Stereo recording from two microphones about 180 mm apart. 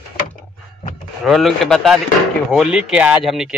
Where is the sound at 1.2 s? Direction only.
Centre (ahead or behind).